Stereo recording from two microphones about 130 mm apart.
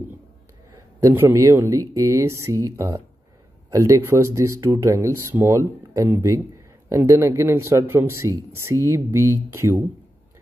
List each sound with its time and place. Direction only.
1.0 s speech: 20° right (ahead or behind)